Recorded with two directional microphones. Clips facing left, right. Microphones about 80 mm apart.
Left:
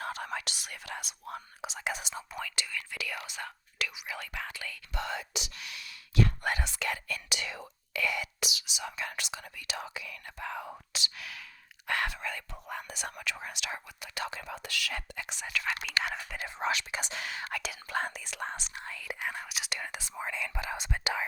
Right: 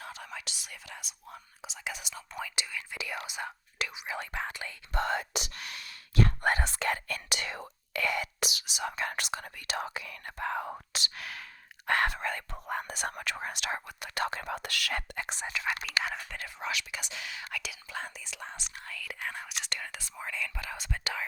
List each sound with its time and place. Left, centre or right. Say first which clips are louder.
0.0 s speech: left 6 dB; left
1.9 s speech: left 3 dB; left
2.4 s speech: right 2 dB; centre
4.9 s speech: right 6 dB; right
15.5 s speech: even; centre
16.0 s speech: left 1 dB; centre
16.6 s speech: left 4 dB; left
17.8 s speech: left 6 dB; left
18.8 s speech: even; left
19.3 s speech: left 1 dB; centre
19.9 s speech: left 2 dB; centre